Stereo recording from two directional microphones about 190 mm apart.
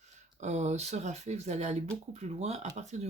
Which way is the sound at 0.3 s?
35° right (ahead or behind).